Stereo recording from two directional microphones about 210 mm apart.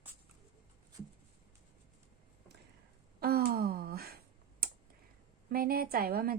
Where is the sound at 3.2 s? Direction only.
45° right (ahead or behind).